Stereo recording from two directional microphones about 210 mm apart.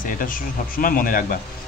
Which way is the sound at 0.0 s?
40° left (ahead or behind).